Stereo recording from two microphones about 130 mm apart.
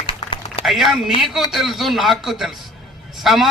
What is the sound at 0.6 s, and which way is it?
A man's voice, centre (ahead or behind).